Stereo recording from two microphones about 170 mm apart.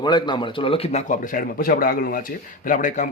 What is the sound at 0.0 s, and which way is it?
A man's voice, 25° left (ahead or behind).